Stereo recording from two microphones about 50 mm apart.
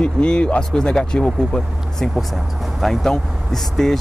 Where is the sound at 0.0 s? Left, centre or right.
Centre.